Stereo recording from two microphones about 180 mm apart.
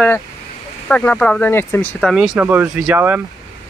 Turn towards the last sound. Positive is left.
turn(degrees=-10)  # may be behind; listen again after turning